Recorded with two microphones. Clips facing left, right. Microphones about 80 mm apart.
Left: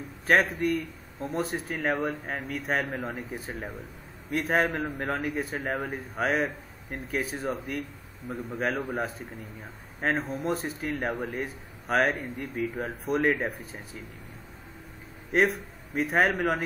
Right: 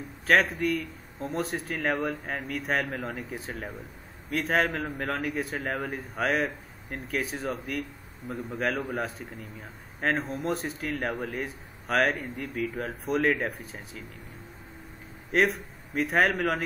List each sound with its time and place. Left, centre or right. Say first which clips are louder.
0.3 s a man's voice: even; centre
5.2 s speech: even; centre
8.3 s a man's voice: even; centre
8.5 s speech: even; centre
15.3 s speech: even; centre